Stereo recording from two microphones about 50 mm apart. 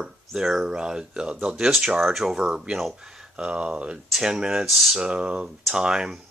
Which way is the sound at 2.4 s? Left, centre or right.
Centre.